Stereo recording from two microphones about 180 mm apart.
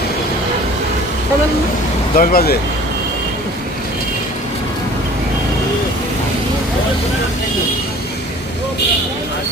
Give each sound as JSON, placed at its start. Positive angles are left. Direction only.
{"t": 2.1, "sound": "speech", "side_deg": 55}